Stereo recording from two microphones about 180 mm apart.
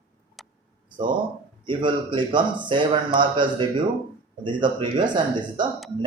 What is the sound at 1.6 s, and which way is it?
Speech, 25° right (ahead or behind).